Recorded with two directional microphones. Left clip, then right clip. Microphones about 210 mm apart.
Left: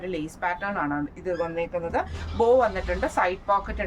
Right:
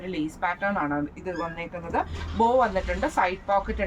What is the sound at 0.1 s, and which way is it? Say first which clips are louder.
Speech: right 1 dB; 20° left (ahead or behind).